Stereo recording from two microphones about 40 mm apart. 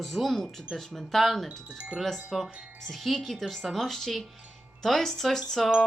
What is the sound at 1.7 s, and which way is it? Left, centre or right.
Speech, right.